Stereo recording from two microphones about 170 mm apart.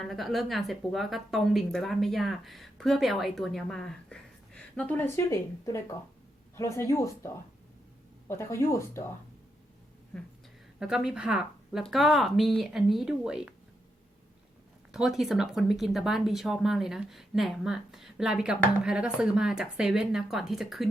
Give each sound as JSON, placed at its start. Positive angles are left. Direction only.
{"t": 0.0, "sound": "speech", "side_deg": 0}
{"t": 8.3, "sound": "speech", "side_deg": 15}
{"t": 10.8, "sound": "speech", "side_deg": -5}
{"t": 14.9, "sound": "speech", "side_deg": -5}